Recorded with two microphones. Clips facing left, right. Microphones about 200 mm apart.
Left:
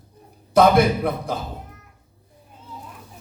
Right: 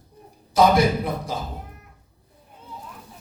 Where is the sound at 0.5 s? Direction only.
60° left (ahead or behind).